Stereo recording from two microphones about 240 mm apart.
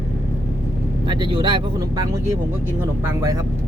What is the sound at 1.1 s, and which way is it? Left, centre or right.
Speech, right.